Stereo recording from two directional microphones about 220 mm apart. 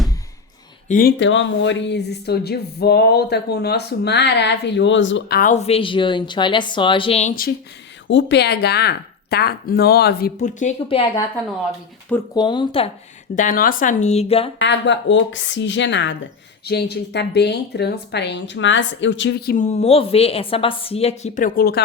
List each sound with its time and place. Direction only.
0.9 s speech: 40° left (ahead or behind)
1.2 s speech: 55° left (ahead or behind)
5.4 s a woman's voice: 30° left (ahead or behind)
8.0 s speech: 55° left (ahead or behind); by 11.0 s 30° left (ahead or behind)
12.3 s a woman's voice: 20° left (ahead or behind)
13.3 s speech: 35° left (ahead or behind)
14.6 s a woman's voice: 55° left (ahead or behind)
19.6 s a woman's voice: 30° left (ahead or behind); by 21.8 s 45° left (ahead or behind)